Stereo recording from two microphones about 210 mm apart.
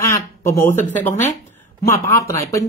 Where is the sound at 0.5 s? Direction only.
10° left (ahead or behind).